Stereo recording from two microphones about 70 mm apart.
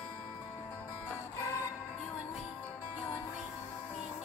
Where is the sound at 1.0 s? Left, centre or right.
Left.